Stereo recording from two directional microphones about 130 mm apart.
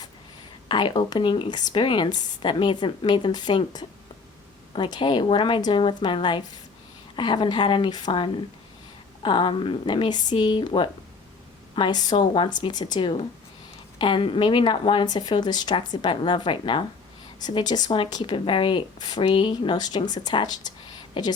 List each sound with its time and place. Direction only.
0.7 s a woman's voice: 35° left (ahead or behind)